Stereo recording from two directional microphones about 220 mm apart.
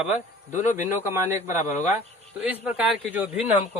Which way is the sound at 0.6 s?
35° left (ahead or behind).